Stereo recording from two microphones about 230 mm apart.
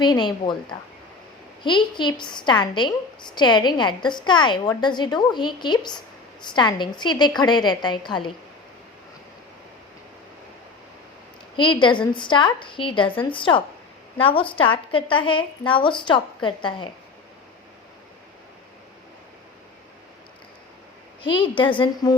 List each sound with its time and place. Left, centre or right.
0.0 s a woman's voice: centre
11.5 s a woman's voice: left
21.2 s a woman's voice: left